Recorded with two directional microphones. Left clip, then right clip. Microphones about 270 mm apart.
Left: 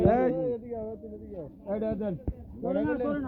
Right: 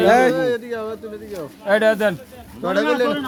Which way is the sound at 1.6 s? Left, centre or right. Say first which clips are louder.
Right 16 dB; right.